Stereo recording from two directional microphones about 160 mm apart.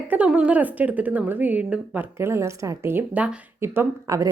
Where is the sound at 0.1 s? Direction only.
10° right (ahead or behind).